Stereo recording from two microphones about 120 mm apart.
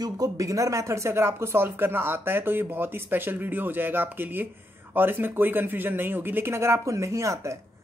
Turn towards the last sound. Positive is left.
turn(degrees=-25)  # may be behind; listen again after turning